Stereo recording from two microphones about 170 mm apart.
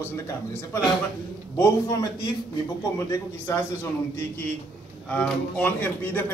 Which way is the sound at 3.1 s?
15° left (ahead or behind).